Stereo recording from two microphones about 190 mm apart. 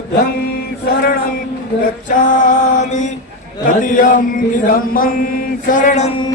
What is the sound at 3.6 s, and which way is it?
Chant, 45° left (ahead or behind).